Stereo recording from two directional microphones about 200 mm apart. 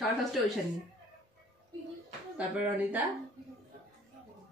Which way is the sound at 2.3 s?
5° right (ahead or behind).